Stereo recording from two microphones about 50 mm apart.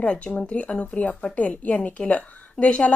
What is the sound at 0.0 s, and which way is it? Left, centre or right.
A woman's voice, left.